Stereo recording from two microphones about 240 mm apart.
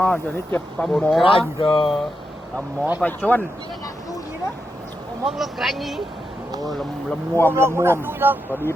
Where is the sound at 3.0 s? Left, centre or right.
Centre.